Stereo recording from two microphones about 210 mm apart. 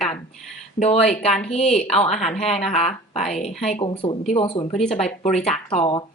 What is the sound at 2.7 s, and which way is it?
Speech, 30° left (ahead or behind).